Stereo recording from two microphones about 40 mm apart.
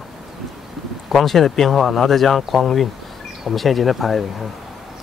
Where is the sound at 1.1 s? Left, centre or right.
Centre.